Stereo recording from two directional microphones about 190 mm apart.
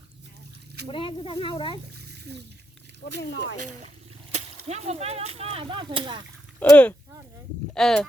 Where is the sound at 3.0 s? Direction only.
55° left (ahead or behind).